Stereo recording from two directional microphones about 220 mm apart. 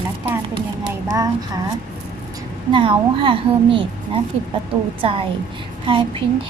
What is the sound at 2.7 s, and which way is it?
Speech, 20° right (ahead or behind).